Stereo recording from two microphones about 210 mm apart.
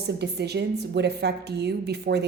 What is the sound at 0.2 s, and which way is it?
A woman's voice, 50° right (ahead or behind).